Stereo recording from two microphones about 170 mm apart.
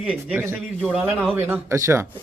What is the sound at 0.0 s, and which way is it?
Speech, 5° right (ahead or behind).